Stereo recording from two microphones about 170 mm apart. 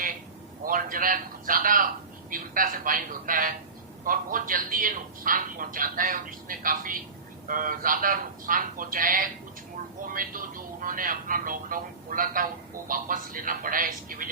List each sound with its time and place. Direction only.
0.6 s a man's voice: 55° right (ahead or behind)